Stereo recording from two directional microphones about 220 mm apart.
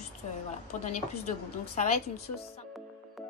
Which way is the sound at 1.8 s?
30° left (ahead or behind).